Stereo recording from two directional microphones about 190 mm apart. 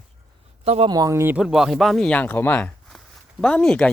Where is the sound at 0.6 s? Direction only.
35° right (ahead or behind).